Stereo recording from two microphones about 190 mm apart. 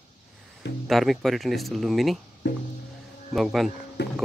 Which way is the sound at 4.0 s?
60° left (ahead or behind).